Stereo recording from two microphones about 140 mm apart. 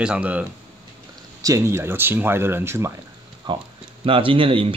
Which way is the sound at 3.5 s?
35° right (ahead or behind).